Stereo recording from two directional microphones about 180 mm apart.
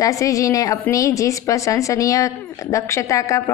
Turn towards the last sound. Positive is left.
turn(degrees=15)  # may be behind; listen again after turning